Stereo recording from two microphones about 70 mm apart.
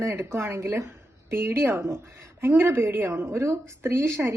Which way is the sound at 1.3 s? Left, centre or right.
Right.